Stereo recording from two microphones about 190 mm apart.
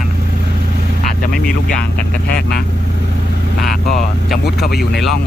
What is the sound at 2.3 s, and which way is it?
Speech, 55° left (ahead or behind).